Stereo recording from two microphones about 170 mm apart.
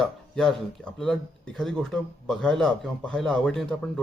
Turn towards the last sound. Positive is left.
turn(degrees=5)  # may be behind; listen again after turning